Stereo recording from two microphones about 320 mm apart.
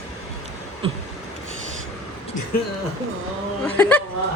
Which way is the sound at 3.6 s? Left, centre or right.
Centre.